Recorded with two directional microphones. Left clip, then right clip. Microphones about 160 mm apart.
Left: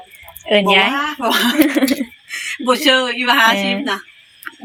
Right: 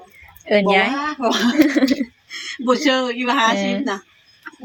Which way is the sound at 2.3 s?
25° right (ahead or behind).